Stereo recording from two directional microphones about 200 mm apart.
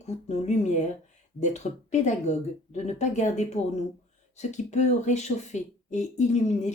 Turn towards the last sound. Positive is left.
turn(degrees=35)  # may be behind; listen again after turning